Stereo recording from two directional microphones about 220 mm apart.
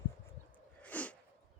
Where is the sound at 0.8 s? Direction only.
5° left (ahead or behind).